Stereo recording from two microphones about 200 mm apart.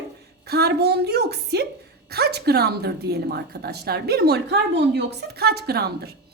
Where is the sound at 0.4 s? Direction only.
55° right (ahead or behind).